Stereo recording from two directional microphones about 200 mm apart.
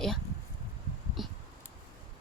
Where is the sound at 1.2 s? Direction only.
Centre (ahead or behind).